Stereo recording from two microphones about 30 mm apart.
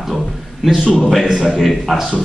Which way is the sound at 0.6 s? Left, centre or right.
Centre.